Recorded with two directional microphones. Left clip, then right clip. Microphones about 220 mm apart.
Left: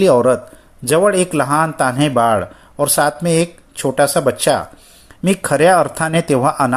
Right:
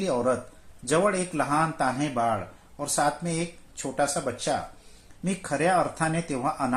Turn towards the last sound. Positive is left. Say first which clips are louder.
# left 13 dB
turn(degrees=40)  # may be behind; listen again after turning